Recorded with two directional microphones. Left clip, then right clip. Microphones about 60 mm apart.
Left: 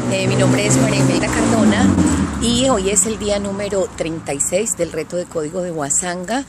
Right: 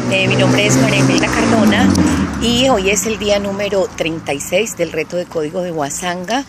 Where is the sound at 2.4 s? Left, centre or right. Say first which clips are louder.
Right 4 dB; left.